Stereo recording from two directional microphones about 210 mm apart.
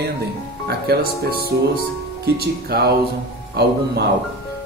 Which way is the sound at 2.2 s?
50° right (ahead or behind).